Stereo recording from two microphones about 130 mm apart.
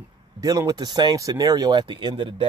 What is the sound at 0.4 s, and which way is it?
Speech, 25° right (ahead or behind).